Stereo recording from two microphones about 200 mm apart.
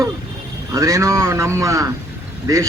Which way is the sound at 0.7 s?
15° right (ahead or behind).